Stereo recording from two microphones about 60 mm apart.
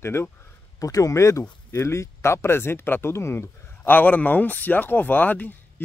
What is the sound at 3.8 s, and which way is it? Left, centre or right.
Speech, left.